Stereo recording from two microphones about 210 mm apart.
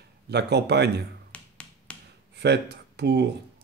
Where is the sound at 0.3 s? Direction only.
50° right (ahead or behind).